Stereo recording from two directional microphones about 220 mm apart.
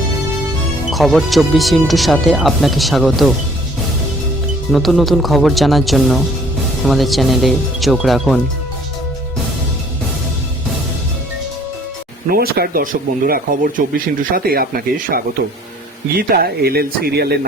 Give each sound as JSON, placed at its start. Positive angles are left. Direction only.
{"t": 0.9, "sound": "speech", "side_deg": 0}
{"t": 4.7, "sound": "speech", "side_deg": 0}
{"t": 12.3, "sound": "speech", "side_deg": -45}